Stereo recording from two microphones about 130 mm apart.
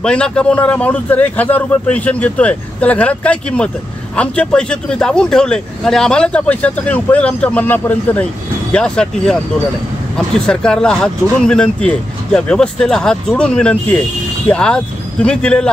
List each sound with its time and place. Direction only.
0.0 s a man's voice: 10° left (ahead or behind)